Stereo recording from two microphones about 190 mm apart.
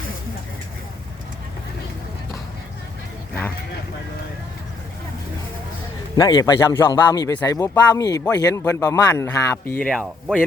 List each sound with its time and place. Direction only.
6.1 s a man's voice: 20° left (ahead or behind)
9.8 s speech: 5° left (ahead or behind)